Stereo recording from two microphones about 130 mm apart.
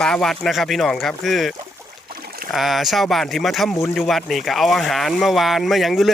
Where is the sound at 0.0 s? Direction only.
5° left (ahead or behind).